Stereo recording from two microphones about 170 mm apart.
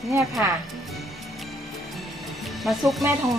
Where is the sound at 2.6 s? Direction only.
Centre (ahead or behind).